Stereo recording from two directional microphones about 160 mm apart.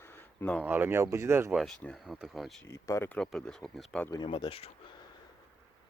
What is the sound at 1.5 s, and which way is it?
Speech, 5° left (ahead or behind).